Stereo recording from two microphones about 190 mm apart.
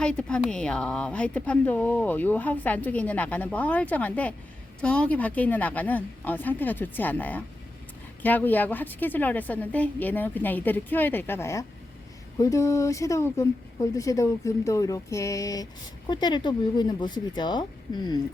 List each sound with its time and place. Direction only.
0.0 s a woman's voice: 5° left (ahead or behind); by 18.2 s 20° left (ahead or behind)